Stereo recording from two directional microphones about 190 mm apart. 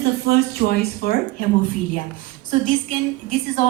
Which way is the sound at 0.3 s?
55° left (ahead or behind).